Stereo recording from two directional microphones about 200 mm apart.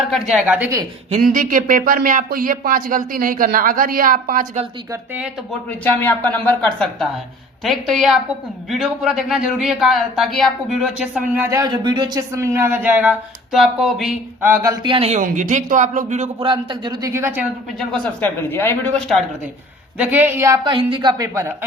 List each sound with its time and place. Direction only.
0.0 s speech: centre (ahead or behind)
1.2 s speech: 40° right (ahead or behind)
4.9 s a woman's voice: 10° right (ahead or behind)
5.6 s speech: 10° left (ahead or behind)
14.4 s a man's voice: 15° right (ahead or behind)
15.2 s speech: 40° right (ahead or behind)
16.5 s a woman's voice: 25° right (ahead or behind)
17.7 s speech: 5° left (ahead or behind)
20.0 s a woman's voice: 10° right (ahead or behind)